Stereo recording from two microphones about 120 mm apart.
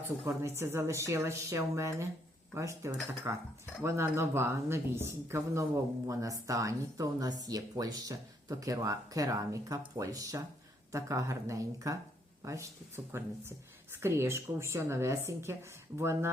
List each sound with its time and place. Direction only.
0.3 s speech: 25° right (ahead or behind)